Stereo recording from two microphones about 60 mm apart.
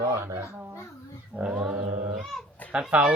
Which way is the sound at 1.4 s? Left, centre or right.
Centre.